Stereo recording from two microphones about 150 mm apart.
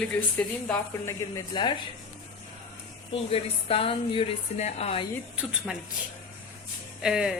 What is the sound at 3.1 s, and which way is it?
Speech, 40° left (ahead or behind).